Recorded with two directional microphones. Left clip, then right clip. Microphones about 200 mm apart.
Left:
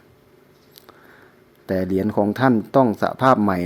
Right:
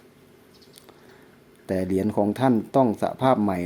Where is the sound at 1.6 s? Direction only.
10° left (ahead or behind).